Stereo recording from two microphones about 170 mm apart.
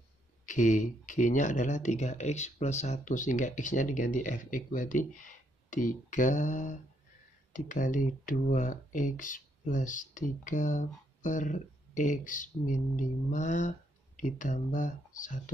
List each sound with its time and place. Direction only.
0.5 s speech: 50° left (ahead or behind)